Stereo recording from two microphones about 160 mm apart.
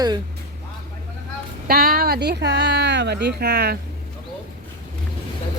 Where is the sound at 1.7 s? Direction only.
65° right (ahead or behind); by 3.7 s 85° right.